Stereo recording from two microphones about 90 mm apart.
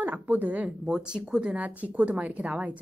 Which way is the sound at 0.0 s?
20° right (ahead or behind).